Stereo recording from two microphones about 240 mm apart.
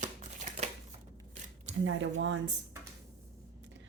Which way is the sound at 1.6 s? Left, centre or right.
Right.